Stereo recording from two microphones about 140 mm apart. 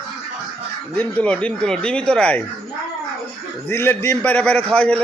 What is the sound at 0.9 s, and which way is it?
A man's voice, 10° left (ahead or behind).